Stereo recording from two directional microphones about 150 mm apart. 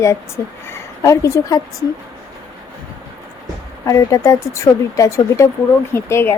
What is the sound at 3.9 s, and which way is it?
Speech, 20° left (ahead or behind).